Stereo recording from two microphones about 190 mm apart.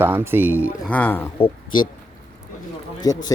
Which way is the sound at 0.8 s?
10° left (ahead or behind).